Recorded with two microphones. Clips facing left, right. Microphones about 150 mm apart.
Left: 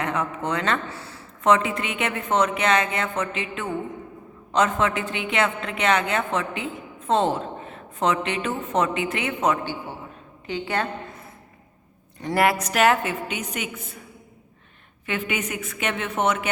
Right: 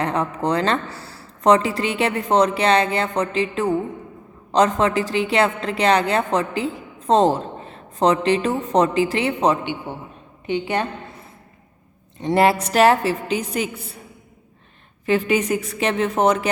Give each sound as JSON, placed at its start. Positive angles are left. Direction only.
{"t": 0.0, "sound": "a woman's voice", "side_deg": -35}
{"t": 10.4, "sound": "a woman's voice", "side_deg": -20}
{"t": 12.2, "sound": "a woman's voice", "side_deg": -25}
{"t": 15.0, "sound": "a woman's voice", "side_deg": -35}